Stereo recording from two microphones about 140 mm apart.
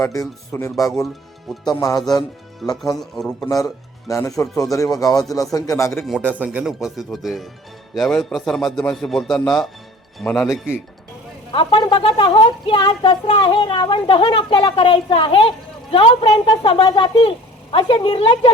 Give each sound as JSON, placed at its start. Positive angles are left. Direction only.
{"t": 0.0, "sound": "speech", "side_deg": 25}
{"t": 3.0, "sound": "a man's voice", "side_deg": 5}
{"t": 4.1, "sound": "speech", "side_deg": 25}
{"t": 6.0, "sound": "a man's voice", "side_deg": -5}
{"t": 11.5, "sound": "a woman's voice", "side_deg": 35}